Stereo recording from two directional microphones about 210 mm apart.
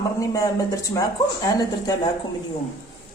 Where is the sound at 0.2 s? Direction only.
15° left (ahead or behind).